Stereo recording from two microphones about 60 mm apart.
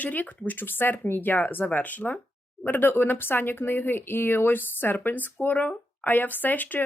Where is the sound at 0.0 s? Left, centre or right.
Left.